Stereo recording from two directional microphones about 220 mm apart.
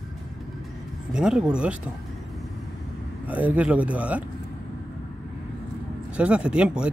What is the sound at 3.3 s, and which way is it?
Speech, 5° right (ahead or behind).